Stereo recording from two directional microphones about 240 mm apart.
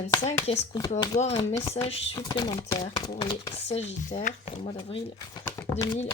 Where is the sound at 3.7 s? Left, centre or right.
Left.